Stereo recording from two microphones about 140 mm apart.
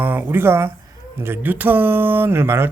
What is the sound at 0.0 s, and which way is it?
Speech, 15° right (ahead or behind).